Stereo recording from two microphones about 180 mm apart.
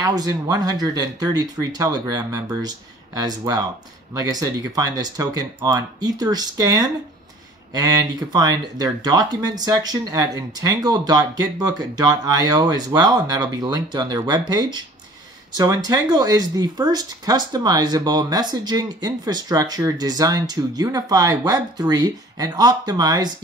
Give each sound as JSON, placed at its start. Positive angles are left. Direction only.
{"t": 0.0, "sound": "speech", "side_deg": -20}